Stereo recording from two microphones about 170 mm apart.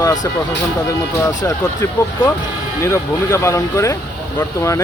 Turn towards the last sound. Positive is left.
turn(degrees=20)  # may be behind; listen again after turning